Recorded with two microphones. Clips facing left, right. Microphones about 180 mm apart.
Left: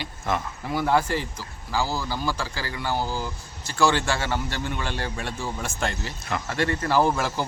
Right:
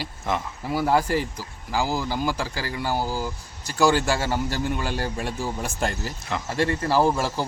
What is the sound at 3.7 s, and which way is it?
Speech, 40° right (ahead or behind).